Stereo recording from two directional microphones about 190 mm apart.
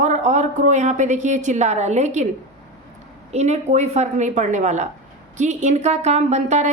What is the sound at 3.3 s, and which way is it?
A woman's voice, 35° right (ahead or behind).